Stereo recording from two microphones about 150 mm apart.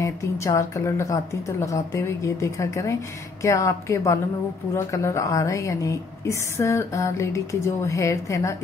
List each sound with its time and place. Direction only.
0.0 s a woman's voice: 20° left (ahead or behind)